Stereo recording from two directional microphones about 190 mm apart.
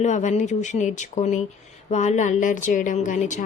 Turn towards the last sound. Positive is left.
turn(degrees=40)  # may be behind; listen again after turning